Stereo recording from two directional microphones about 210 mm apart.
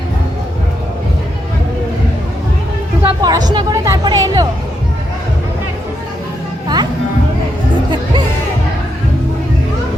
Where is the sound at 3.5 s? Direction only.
20° right (ahead or behind).